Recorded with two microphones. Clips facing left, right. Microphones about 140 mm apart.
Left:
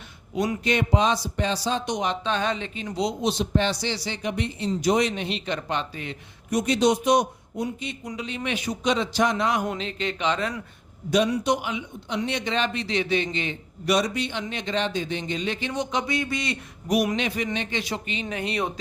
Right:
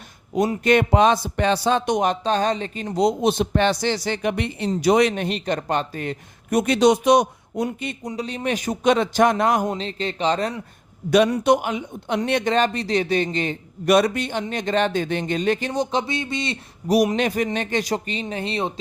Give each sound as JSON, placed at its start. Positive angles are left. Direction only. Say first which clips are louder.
{"t": 0.3, "sound": "a man's voice", "louder": "right 6 dB", "side_deg": -45}
{"t": 8.0, "sound": "speech", "louder": "right 5 dB", "side_deg": -40}
{"t": 11.1, "sound": "a man's voice", "louder": "right 5 dB", "side_deg": -60}